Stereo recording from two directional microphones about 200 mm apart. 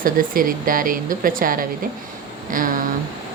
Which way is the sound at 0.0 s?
45° right (ahead or behind).